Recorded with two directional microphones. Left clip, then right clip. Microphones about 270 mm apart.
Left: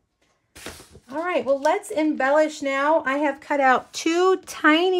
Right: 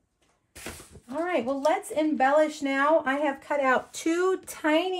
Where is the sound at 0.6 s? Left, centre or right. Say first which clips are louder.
Left 2 dB; left; by 4.4 s centre.